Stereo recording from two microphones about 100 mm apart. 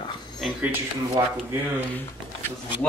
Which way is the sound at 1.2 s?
35° right (ahead or behind).